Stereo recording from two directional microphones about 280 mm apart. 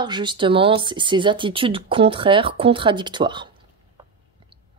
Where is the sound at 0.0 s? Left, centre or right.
Centre.